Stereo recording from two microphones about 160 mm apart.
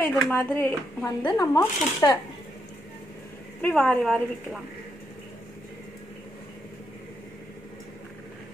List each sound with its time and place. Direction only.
0.0 s speech: 10° left (ahead or behind)
1.4 s speech: 20° left (ahead or behind)
3.6 s a woman's voice: 5° left (ahead or behind)